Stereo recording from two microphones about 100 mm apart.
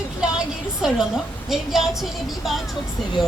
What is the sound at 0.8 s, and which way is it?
Speech, 5° right (ahead or behind).